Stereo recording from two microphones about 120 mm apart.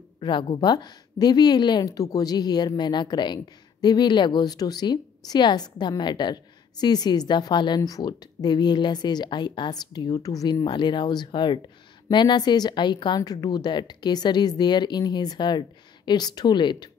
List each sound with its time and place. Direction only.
0.2 s a woman's voice: 40° left (ahead or behind)